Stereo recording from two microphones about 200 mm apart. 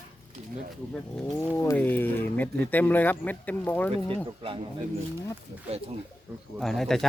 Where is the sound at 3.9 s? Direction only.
25° right (ahead or behind).